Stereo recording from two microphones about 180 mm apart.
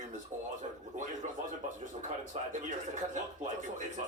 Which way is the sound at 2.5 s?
45° right (ahead or behind).